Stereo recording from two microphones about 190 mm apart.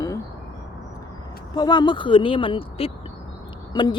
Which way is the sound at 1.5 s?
20° left (ahead or behind).